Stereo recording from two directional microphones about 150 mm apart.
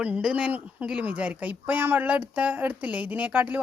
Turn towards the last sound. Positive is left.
turn(degrees=-10)  # may be behind; listen again after turning